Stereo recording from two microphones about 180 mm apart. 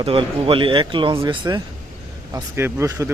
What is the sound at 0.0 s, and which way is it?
Speech, 30° right (ahead or behind).